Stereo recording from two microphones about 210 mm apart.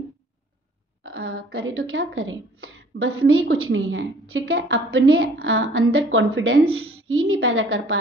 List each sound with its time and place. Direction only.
1.0 s a woman's voice: 70° right (ahead or behind)
5.4 s a woman's voice: 60° right (ahead or behind)